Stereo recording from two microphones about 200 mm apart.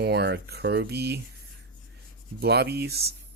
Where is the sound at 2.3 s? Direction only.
55° right (ahead or behind).